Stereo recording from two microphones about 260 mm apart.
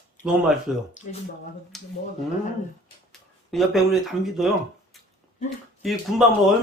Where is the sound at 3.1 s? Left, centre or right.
Centre.